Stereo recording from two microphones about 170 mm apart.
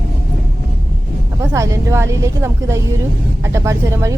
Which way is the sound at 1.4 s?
15° right (ahead or behind).